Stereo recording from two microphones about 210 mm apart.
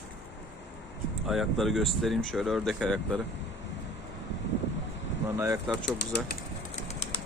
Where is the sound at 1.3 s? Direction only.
Centre (ahead or behind).